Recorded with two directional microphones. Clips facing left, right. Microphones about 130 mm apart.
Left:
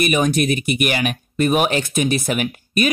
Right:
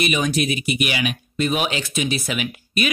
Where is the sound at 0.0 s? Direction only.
50° left (ahead or behind).